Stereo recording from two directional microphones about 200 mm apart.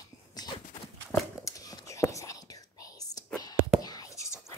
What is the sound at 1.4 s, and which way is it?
Whispering, 15° left (ahead or behind).